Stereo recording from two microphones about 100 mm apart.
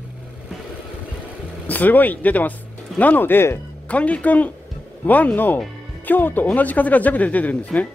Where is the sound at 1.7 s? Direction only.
20° left (ahead or behind).